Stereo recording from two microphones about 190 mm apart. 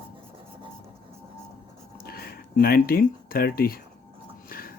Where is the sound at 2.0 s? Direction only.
50° left (ahead or behind).